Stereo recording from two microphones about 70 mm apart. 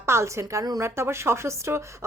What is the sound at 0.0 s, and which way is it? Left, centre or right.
A woman's voice, right.